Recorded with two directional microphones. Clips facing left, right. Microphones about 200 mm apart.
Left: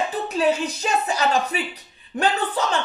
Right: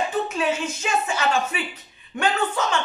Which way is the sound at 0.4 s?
35° left (ahead or behind).